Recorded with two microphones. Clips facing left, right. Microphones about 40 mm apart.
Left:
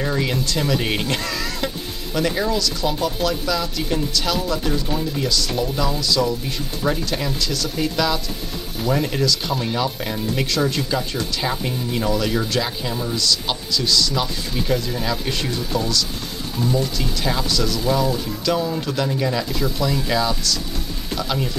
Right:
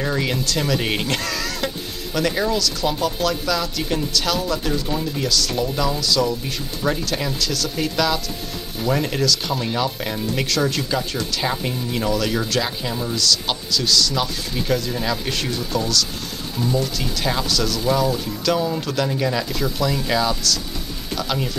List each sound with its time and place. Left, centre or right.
0.0 s speech: centre